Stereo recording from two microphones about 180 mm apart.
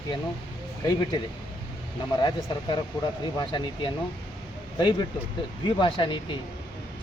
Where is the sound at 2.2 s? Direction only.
25° left (ahead or behind).